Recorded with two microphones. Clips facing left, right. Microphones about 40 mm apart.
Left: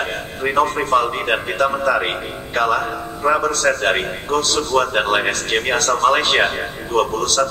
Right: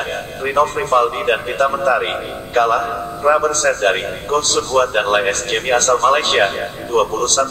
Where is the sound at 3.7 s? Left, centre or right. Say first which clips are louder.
Right 2 dB; centre.